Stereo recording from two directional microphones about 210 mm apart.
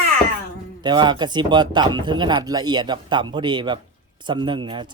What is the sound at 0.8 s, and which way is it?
Speech, 20° right (ahead or behind).